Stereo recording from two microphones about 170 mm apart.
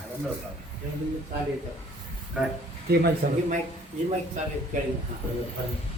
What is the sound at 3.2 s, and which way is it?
Speech, 65° right (ahead or behind).